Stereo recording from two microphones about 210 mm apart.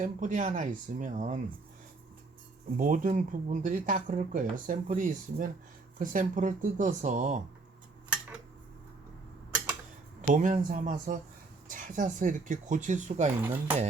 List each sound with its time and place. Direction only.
0.0 s speech: 35° right (ahead or behind)
2.7 s speech: 40° right (ahead or behind)
10.2 s speech: 35° right (ahead or behind)
13.4 s speech: 10° right (ahead or behind)